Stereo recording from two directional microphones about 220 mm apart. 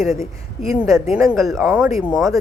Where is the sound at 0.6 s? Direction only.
15° right (ahead or behind).